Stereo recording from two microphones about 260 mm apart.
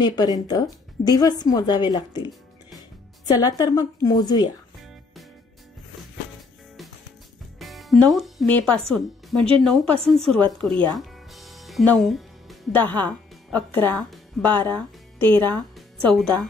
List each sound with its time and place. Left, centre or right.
0.0 s a woman's voice: centre
3.3 s a woman's voice: centre
7.5 s music: centre
8.1 s speech: centre
10.7 s speech: centre
11.0 s music: centre
15.5 s speech: centre